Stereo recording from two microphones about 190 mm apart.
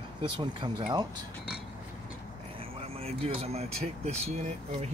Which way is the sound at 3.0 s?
35° right (ahead or behind).